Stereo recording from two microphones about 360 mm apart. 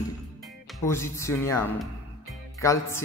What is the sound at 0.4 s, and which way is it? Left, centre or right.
Speech, centre.